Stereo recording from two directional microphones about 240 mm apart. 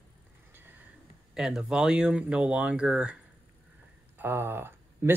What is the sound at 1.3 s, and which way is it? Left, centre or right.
Speech, centre.